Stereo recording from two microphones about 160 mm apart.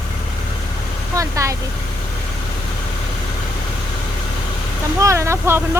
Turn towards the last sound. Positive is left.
turn(degrees=-15)  # may be behind; listen again after turning